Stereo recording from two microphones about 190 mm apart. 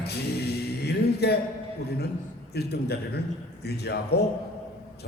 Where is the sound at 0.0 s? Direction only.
60° left (ahead or behind).